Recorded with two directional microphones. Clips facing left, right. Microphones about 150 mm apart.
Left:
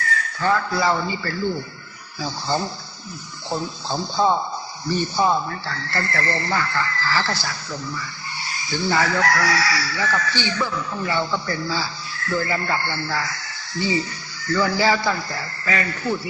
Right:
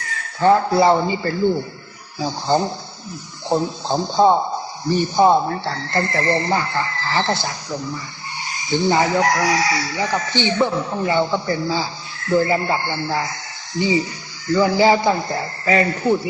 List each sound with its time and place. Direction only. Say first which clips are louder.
0.0 s speech: right 6 dB; 25° right (ahead or behind)
4.4 s a sound: right 5 dB; 30° right (ahead or behind)
4.9 s a man's voice: right 4 dB; 15° right (ahead or behind)
5.4 s speech: right 6 dB; 30° right (ahead or behind)
11.1 s speech: right 5 dB; 20° right (ahead or behind)